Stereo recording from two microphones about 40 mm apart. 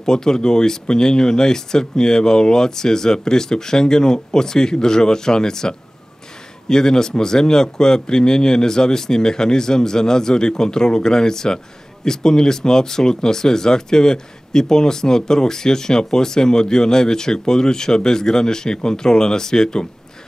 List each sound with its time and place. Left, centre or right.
0.0 s speech: centre